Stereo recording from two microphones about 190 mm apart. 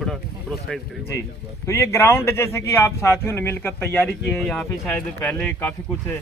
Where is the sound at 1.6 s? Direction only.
15° left (ahead or behind).